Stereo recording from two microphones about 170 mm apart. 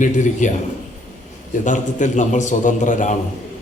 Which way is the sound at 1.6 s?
45° left (ahead or behind).